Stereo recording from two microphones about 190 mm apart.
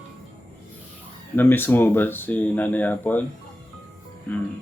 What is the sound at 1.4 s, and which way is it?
Speech, 10° left (ahead or behind).